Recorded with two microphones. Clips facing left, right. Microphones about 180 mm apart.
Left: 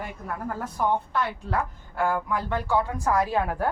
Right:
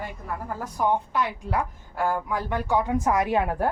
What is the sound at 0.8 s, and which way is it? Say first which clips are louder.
A woman's voice: right 2 dB; 15° right (ahead or behind).